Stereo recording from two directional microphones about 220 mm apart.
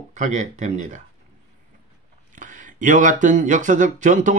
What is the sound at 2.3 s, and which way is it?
Speech, 35° right (ahead or behind).